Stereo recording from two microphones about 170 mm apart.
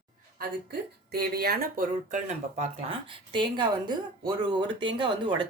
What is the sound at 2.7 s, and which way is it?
Speech, 30° right (ahead or behind).